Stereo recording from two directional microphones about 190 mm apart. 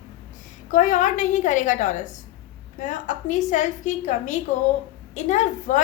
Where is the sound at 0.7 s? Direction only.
40° left (ahead or behind).